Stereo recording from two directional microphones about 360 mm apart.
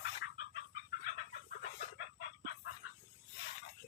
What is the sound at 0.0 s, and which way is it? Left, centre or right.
Chicken, left.